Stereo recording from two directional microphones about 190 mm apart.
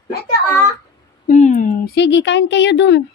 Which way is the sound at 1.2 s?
40° left (ahead or behind).